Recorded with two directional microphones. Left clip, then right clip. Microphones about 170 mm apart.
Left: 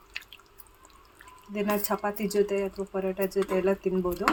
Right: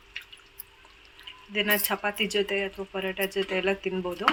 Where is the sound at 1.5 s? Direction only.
35° left (ahead or behind).